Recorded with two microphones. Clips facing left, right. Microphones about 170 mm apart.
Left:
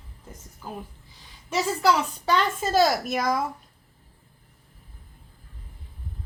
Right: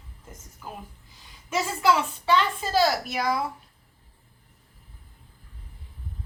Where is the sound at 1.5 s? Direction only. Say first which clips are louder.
Left 1 dB; 40° left (ahead or behind).